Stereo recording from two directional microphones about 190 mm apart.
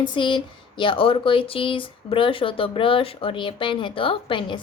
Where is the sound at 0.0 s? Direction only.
25° left (ahead or behind).